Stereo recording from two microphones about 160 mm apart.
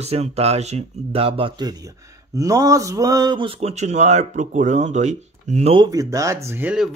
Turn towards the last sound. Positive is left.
turn(degrees=-5)  # may be behind; listen again after turning